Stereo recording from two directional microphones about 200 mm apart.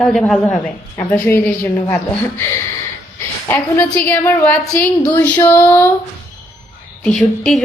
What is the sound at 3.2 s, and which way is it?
A woman's voice, 10° left (ahead or behind).